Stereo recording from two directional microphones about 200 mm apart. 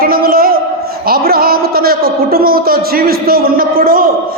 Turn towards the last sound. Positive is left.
turn(degrees=-45)  # may be behind; listen again after turning